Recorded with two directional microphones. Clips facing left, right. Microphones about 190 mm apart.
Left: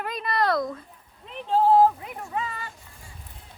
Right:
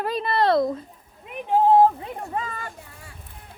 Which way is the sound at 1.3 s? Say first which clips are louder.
Right 2 dB; 15° right (ahead or behind).